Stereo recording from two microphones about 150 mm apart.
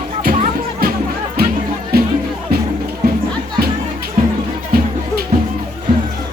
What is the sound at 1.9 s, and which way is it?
Music, 90° right.